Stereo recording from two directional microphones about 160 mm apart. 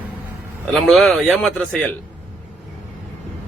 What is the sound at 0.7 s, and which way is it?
A man's voice, centre (ahead or behind).